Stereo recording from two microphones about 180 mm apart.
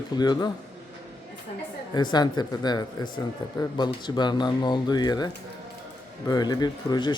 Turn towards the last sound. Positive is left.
turn(degrees=25)  # may be behind; listen again after turning